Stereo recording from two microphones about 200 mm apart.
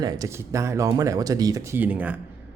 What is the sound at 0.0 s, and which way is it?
A man's voice, 20° right (ahead or behind).